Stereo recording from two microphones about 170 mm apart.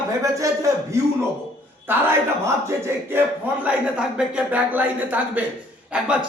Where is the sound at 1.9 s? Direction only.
10° right (ahead or behind).